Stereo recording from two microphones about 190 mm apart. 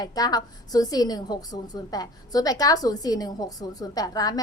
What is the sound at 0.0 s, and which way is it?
A woman's voice, 20° left (ahead or behind).